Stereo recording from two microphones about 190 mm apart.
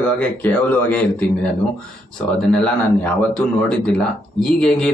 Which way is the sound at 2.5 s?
5° left (ahead or behind).